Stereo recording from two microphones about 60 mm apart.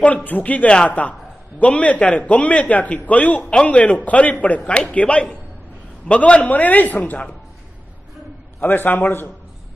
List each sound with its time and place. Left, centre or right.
0.0 s a man's voice: left
8.5 s a man's voice: left